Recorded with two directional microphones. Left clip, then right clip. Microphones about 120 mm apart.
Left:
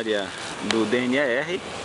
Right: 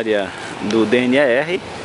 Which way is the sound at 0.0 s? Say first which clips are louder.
Right 7 dB; centre (ahead or behind).